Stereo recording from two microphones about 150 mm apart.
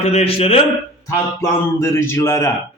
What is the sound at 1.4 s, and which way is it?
Speech, 20° left (ahead or behind).